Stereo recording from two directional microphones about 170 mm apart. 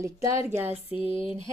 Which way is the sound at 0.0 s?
15° right (ahead or behind).